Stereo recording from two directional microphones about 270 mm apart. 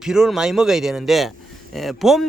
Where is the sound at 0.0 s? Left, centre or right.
Centre.